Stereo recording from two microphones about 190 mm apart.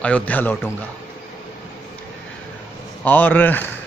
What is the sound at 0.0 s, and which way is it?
Speech, 5° left (ahead or behind).